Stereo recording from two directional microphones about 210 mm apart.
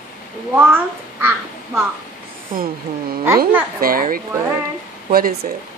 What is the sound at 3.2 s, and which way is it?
Speech, 10° right (ahead or behind).